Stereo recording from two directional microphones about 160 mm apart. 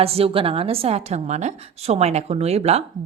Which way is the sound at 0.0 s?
35° right (ahead or behind).